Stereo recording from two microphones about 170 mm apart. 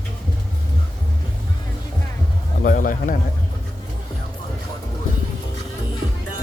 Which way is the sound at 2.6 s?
55° left (ahead or behind).